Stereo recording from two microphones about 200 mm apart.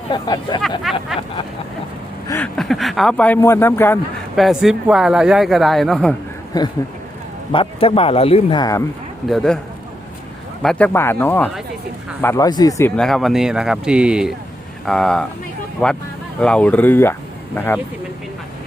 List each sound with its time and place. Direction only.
0.1 s speech: 20° left (ahead or behind)
0.9 s speech: centre (ahead or behind)
2.2 s a sound: 10° left (ahead or behind)
2.6 s speech: centre (ahead or behind)
4.4 s speech: centre (ahead or behind)
7.5 s speech: 25° left (ahead or behind)
9.3 s speech: 5° left (ahead or behind)
10.6 s speech: 5° left (ahead or behind)
13.0 s speech: centre (ahead or behind)